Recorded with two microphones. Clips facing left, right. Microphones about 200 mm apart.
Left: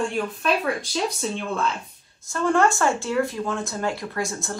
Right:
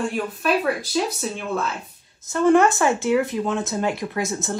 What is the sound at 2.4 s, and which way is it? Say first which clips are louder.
Speech: right 4 dB; 20° right (ahead or behind).